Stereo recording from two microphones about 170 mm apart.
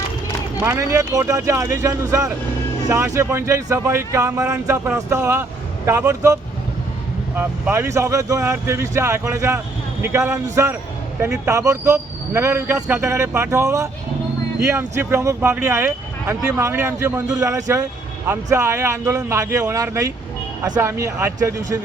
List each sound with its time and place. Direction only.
0.6 s speech: 15° right (ahead or behind)